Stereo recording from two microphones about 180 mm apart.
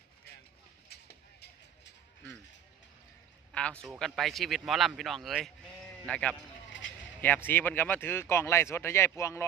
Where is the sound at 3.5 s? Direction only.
5° left (ahead or behind).